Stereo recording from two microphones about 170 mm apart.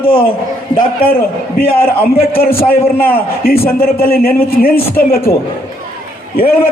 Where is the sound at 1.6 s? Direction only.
60° left (ahead or behind).